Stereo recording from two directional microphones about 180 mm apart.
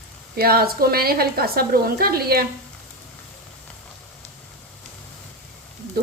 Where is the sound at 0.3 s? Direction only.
60° right (ahead or behind).